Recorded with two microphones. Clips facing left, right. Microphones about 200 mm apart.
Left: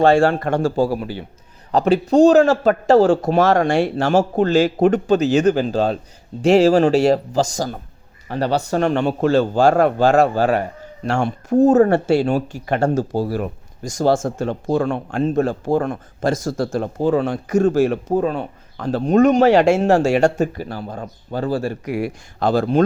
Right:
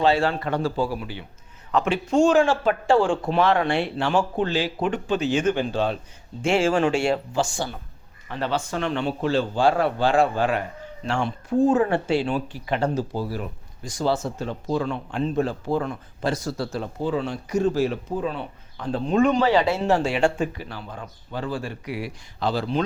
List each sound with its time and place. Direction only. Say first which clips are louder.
0.0 s speech: left 7 dB; 50° left (ahead or behind)